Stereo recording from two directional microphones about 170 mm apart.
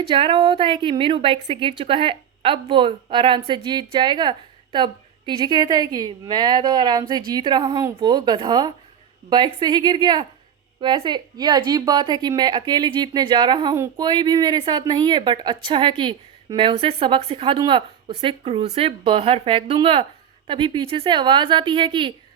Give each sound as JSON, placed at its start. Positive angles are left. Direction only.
{"t": 0.1, "sound": "a woman's voice", "side_deg": -30}